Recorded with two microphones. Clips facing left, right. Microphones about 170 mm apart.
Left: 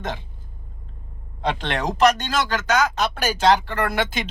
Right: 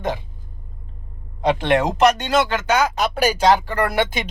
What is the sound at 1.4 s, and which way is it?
Speech, 15° right (ahead or behind).